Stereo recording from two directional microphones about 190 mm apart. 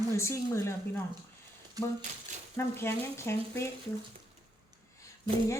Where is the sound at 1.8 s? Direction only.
20° right (ahead or behind).